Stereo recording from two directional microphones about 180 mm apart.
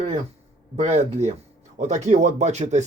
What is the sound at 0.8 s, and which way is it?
Speech, 40° right (ahead or behind).